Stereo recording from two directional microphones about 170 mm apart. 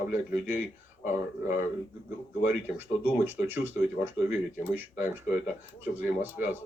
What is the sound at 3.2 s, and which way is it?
Speech, 10° right (ahead or behind).